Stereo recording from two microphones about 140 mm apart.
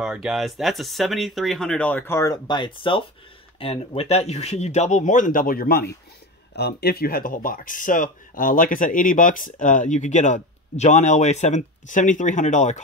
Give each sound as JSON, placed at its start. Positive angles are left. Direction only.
{"t": 0.0, "sound": "speech", "side_deg": -5}
{"t": 2.4, "sound": "speech", "side_deg": 35}